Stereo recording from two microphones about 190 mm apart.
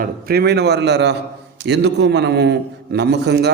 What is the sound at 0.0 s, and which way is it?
A man's voice, 55° right (ahead or behind).